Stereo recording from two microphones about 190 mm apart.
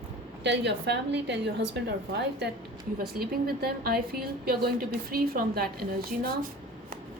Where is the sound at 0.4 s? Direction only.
70° right (ahead or behind).